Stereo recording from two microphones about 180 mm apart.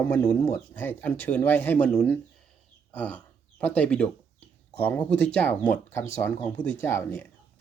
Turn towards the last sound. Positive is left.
turn(degrees=15)  # may be behind; listen again after turning